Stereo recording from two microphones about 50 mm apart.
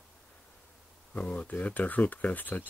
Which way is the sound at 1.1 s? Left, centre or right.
Left.